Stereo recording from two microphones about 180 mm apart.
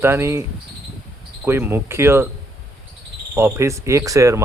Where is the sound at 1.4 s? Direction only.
15° right (ahead or behind).